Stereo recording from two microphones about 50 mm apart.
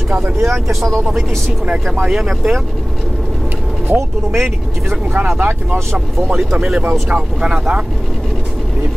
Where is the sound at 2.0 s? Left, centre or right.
Centre.